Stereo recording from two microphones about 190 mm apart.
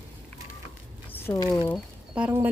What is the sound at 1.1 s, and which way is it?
Speech, 10° left (ahead or behind).